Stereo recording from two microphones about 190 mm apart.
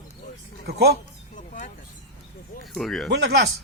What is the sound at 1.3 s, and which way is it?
Vehicle, 40° left (ahead or behind).